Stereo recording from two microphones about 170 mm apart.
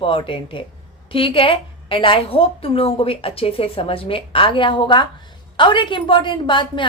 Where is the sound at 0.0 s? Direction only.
30° left (ahead or behind).